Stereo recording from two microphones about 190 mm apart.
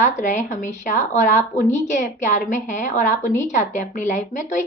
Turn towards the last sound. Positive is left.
turn(degrees=40)  # may be behind; listen again after turning